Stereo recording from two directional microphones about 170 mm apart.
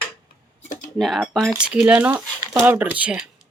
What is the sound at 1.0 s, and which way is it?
Speech, centre (ahead or behind).